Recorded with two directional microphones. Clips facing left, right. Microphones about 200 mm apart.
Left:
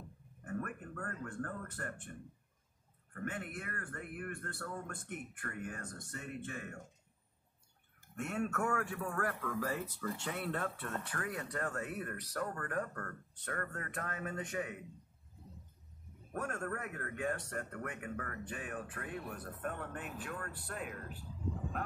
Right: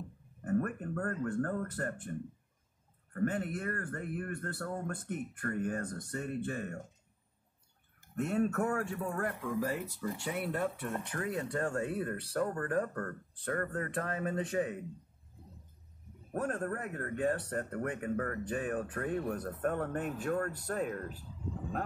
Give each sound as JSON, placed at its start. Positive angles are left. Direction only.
{"t": 0.4, "sound": "speech", "side_deg": -40}
{"t": 3.2, "sound": "speech", "side_deg": -35}
{"t": 8.2, "sound": "speech", "side_deg": -35}
{"t": 16.3, "sound": "speech", "side_deg": -35}